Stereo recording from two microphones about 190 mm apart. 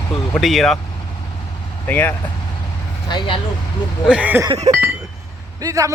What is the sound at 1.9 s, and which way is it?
Speech, 10° left (ahead or behind).